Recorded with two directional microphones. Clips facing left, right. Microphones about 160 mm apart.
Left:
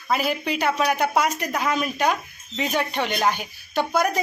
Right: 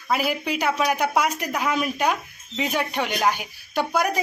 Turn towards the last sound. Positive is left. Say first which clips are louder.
# left 1 dB
turn(degrees=-10)  # may be behind; listen again after turning